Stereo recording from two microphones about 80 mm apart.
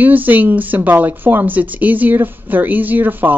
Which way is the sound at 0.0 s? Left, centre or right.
Right.